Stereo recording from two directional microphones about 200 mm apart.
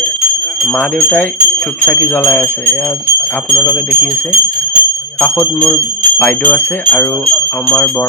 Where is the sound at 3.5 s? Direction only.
5° left (ahead or behind).